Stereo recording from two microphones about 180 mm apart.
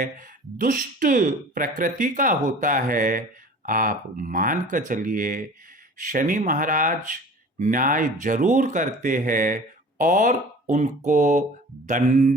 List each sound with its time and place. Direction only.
0.0 s speech: 50° right (ahead or behind)